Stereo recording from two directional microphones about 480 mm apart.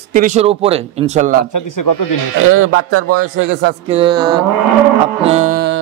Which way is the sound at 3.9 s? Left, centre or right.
Centre.